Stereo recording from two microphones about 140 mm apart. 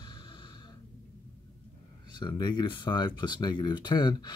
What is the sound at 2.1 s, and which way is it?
Speech, 30° left (ahead or behind).